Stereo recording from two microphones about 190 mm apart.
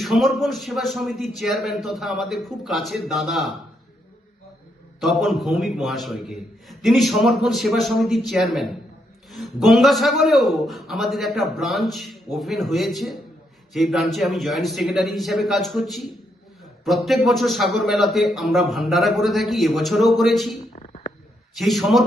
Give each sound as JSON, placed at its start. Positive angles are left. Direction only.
{"t": 0.0, "sound": "a man's voice", "side_deg": 0}
{"t": 4.9, "sound": "a man's voice", "side_deg": 0}
{"t": 20.7, "sound": "a sound", "side_deg": 30}
{"t": 21.5, "sound": "a man's voice", "side_deg": 0}